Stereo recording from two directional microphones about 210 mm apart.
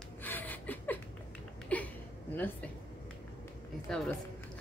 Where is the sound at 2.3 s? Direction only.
10° left (ahead or behind).